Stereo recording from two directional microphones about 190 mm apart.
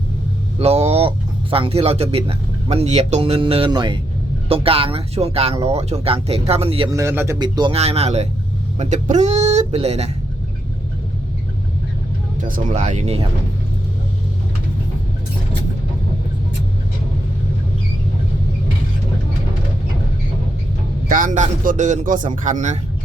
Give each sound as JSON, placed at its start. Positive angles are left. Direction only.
{"t": 0.6, "sound": "speech", "side_deg": -35}
{"t": 6.9, "sound": "a man's voice", "side_deg": -15}
{"t": 12.4, "sound": "speech", "side_deg": -45}
{"t": 21.1, "sound": "a man's voice", "side_deg": -45}